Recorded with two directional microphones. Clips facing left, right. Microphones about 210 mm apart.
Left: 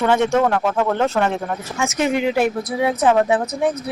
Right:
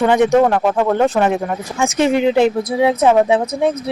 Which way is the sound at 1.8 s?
30° right (ahead or behind).